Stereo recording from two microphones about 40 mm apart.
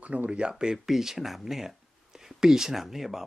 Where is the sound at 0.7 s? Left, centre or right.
Centre.